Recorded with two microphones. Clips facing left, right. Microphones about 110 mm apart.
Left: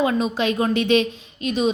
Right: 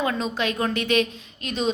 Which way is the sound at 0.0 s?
20° left (ahead or behind).